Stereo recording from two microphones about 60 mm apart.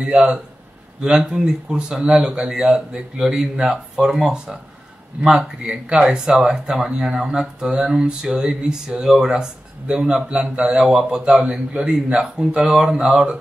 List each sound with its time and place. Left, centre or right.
0.0 s speech: centre